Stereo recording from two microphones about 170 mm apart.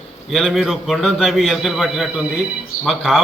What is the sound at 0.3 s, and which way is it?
A man's voice, centre (ahead or behind).